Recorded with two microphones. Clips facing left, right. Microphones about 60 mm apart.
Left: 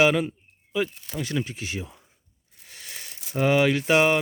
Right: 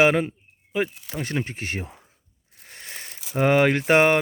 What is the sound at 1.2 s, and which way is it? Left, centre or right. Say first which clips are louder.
Speech: right 1 dB; right.